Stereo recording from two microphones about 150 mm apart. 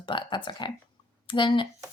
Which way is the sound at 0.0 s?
35° left (ahead or behind).